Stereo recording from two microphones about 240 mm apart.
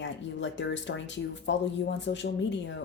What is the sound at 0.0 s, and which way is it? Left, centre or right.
Speech, left.